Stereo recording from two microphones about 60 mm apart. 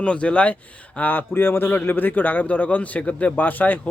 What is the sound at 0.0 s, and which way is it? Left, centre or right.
Speech, centre.